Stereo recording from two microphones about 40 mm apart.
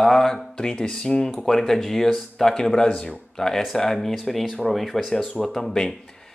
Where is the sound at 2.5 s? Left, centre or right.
Centre.